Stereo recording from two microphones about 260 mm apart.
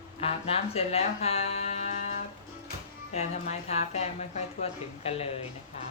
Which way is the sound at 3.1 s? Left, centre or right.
Left.